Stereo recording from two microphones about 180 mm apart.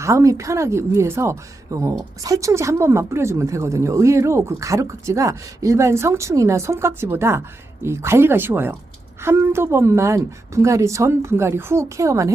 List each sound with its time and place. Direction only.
0.0 s a woman's voice: 15° right (ahead or behind)